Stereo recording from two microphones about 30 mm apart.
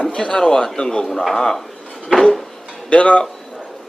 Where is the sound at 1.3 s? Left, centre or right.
Centre.